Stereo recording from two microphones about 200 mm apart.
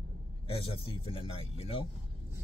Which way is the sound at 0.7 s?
30° left (ahead or behind).